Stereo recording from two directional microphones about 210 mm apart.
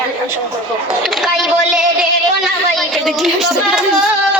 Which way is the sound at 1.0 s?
Centre (ahead or behind).